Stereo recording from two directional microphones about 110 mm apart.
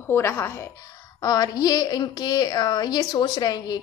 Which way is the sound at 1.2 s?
35° left (ahead or behind).